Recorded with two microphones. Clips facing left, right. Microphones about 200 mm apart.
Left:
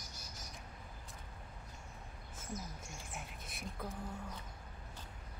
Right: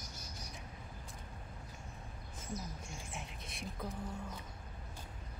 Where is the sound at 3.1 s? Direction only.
Centre (ahead or behind).